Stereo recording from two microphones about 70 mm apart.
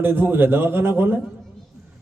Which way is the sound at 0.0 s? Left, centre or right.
Right.